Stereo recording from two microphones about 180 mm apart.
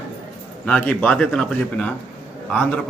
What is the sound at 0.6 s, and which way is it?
A man's voice, 5° left (ahead or behind).